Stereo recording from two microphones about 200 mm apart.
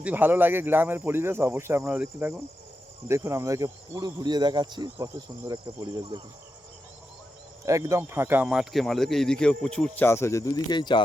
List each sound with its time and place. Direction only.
0.0 s speech: 10° right (ahead or behind)
7.6 s speech: 15° right (ahead or behind); by 11.0 s 20° left (ahead or behind)